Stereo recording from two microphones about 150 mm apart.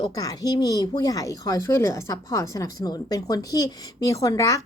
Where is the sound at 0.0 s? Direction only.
25° left (ahead or behind).